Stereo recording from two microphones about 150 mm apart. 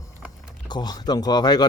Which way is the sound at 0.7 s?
25° left (ahead or behind).